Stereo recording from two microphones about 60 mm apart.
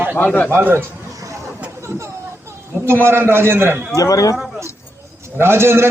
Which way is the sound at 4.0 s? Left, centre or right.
Left.